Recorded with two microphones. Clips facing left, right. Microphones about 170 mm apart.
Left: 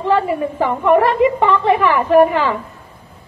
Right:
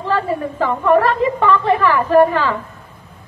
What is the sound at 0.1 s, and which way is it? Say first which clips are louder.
A man's voice: left 2 dB; 15° left (ahead or behind).